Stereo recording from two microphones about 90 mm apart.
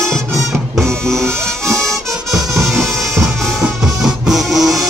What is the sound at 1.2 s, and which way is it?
Music, 30° right (ahead or behind).